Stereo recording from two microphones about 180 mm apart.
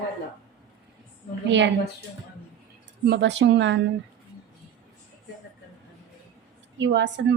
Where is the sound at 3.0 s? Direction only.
70° right (ahead or behind).